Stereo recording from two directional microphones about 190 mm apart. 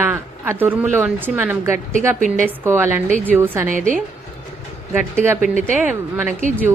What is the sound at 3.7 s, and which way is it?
Speech, 45° right (ahead or behind).